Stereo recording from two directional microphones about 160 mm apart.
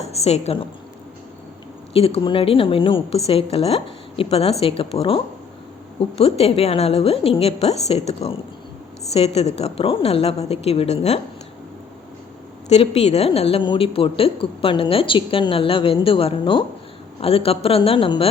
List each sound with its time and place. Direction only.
0.0 s a woman's voice: 40° left (ahead or behind)
1.9 s speech: 35° left (ahead or behind)
12.6 s speech: 40° left (ahead or behind)